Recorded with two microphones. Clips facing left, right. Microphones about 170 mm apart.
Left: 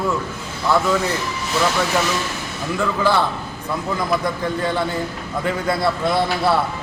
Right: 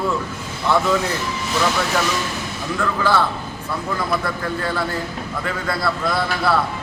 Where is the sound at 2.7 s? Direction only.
15° left (ahead or behind).